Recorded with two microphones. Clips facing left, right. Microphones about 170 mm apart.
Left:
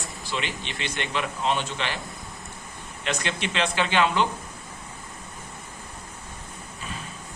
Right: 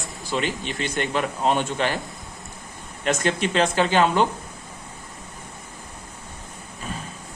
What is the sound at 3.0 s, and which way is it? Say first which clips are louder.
Speech: right 6 dB; 45° right (ahead or behind).